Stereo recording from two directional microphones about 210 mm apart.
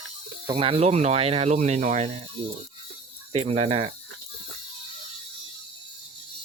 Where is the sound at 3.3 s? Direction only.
30° right (ahead or behind).